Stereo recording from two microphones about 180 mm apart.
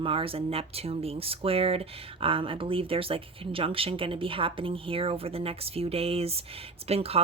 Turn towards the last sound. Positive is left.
turn(degrees=-35)  # may be behind; listen again after turning